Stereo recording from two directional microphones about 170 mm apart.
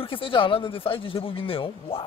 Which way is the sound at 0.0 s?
30° left (ahead or behind).